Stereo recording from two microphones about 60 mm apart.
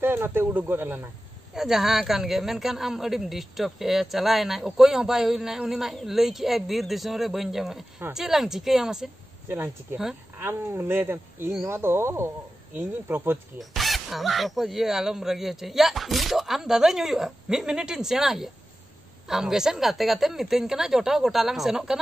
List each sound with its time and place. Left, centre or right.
0.0 s speech: right
1.5 s a man's voice: centre
9.5 s speech: right
13.6 s a man's voice: centre